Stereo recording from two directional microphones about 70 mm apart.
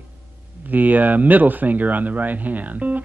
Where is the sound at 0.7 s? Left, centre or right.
Right.